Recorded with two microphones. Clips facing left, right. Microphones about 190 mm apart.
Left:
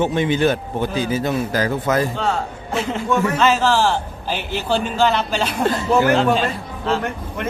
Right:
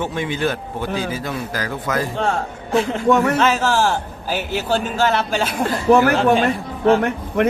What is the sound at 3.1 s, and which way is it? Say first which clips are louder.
Speech: right 5 dB; 60° right (ahead or behind).